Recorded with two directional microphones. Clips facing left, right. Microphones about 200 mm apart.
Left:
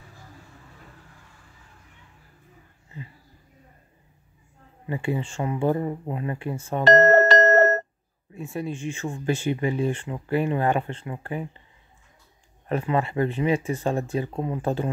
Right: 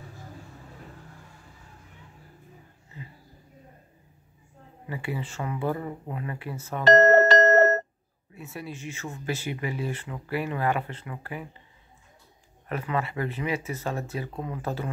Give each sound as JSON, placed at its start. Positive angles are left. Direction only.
{"t": 4.8, "sound": "speech", "side_deg": 25}
{"t": 6.8, "sound": "music", "side_deg": 55}
{"t": 8.4, "sound": "speech", "side_deg": 30}
{"t": 12.6, "sound": "speech", "side_deg": 30}